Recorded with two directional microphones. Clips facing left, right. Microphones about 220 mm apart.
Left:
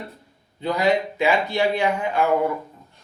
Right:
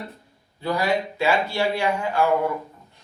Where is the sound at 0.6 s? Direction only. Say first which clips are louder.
Left 3 dB; 20° left (ahead or behind).